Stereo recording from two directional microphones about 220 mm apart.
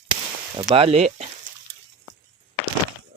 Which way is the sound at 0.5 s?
20° right (ahead or behind).